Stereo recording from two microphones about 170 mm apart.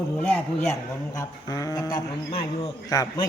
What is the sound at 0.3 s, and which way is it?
A man's voice, 15° left (ahead or behind).